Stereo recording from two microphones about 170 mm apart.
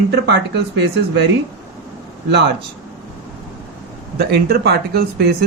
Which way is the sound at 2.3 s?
85° right.